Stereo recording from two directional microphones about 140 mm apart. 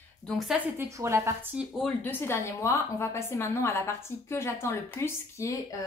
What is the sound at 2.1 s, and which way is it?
A woman's voice, 15° left (ahead or behind).